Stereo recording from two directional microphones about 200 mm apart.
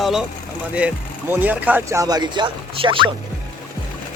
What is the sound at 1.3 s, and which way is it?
Speech, 10° right (ahead or behind).